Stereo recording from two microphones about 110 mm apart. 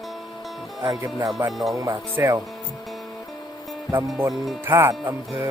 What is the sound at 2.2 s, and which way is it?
Speech, 20° right (ahead or behind).